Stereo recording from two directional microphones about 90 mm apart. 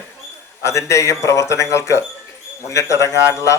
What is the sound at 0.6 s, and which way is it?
Speech, 35° left (ahead or behind).